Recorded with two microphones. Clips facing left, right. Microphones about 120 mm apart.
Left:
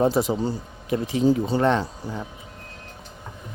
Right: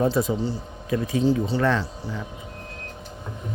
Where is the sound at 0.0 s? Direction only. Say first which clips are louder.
Left 1 dB; 30° left (ahead or behind).